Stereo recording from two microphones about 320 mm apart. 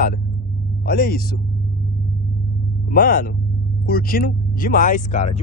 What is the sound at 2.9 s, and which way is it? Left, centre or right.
Speech, left.